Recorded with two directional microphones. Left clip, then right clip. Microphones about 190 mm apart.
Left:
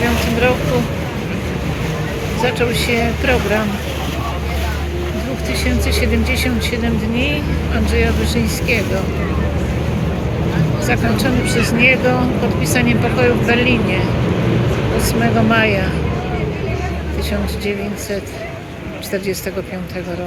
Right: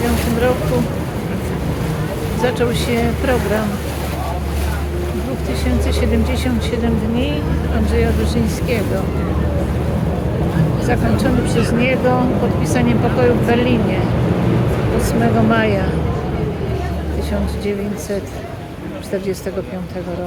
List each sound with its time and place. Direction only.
2.4 s speech: 10° right (ahead or behind)
5.9 s speech: 5° right (ahead or behind)
7.9 s speech: 5° right (ahead or behind)
10.8 s speech: 5° right (ahead or behind)